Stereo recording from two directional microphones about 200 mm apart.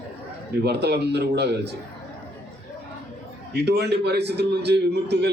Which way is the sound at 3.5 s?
55° right (ahead or behind).